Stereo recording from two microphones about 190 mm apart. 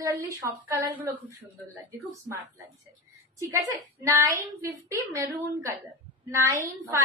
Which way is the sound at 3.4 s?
15° right (ahead or behind).